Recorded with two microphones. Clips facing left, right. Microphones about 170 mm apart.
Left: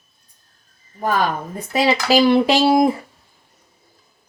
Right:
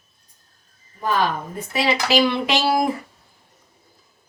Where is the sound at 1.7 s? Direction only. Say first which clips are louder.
Left 3 dB; 40° left (ahead or behind).